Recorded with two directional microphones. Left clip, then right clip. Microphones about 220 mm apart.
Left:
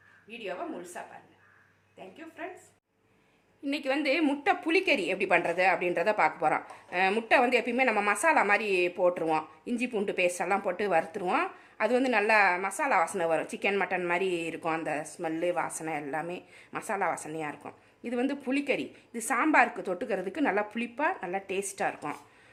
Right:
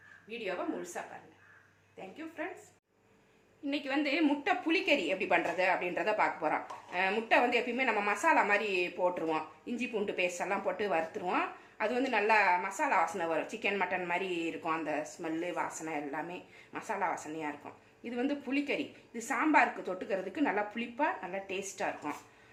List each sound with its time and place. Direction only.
0.3 s a woman's voice: centre (ahead or behind)
3.7 s a woman's voice: 55° left (ahead or behind)